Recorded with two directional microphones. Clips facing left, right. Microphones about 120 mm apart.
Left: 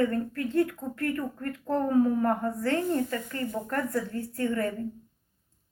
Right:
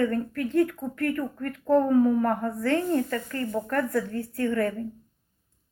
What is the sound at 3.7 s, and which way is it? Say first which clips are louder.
A woman's voice: right 4 dB; 25° left (ahead or behind).